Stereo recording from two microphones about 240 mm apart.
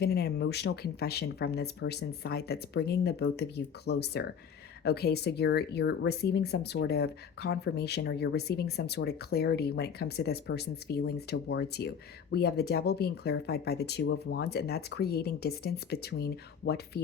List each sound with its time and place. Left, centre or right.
0.0 s speech: left